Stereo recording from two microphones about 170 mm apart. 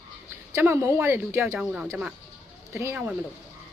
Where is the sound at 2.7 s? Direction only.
15° right (ahead or behind).